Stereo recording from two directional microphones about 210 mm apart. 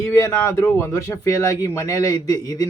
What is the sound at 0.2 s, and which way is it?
Speech, 15° left (ahead or behind).